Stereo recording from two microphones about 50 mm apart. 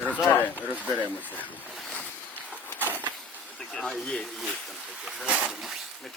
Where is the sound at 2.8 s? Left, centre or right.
Right.